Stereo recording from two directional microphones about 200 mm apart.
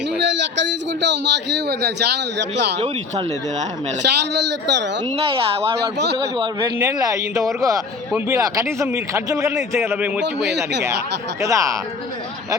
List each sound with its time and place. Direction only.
0.2 s a man's voice: 60° right (ahead or behind)
2.7 s speech: 30° right (ahead or behind)
4.0 s a man's voice: 60° right (ahead or behind)
5.1 s speech: 30° right (ahead or behind); by 10.2 s 10° right (ahead or behind)
11.3 s speech: 15° right (ahead or behind)